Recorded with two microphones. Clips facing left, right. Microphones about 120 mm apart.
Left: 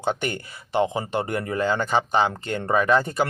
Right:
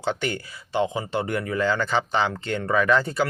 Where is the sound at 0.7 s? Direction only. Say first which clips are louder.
Left 2 dB; 50° left (ahead or behind).